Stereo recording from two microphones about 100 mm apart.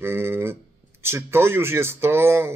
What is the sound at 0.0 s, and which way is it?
A man's voice, 25° right (ahead or behind).